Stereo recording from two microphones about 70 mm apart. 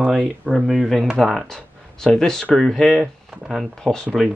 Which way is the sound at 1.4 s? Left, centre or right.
Centre.